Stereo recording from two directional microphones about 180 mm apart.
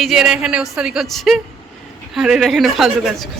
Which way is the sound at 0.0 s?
5° right (ahead or behind).